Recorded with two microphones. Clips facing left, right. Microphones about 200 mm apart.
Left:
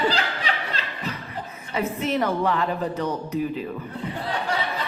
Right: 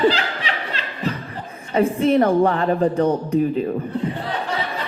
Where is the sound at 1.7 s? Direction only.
30° right (ahead or behind).